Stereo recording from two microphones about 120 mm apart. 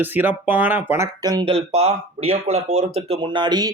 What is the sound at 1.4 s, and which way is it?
Speech, 55° right (ahead or behind).